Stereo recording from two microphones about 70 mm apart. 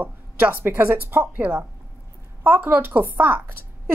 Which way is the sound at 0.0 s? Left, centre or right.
Right.